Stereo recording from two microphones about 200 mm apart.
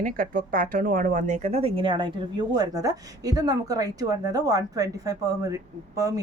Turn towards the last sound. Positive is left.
turn(degrees=-15)  # may be behind; listen again after turning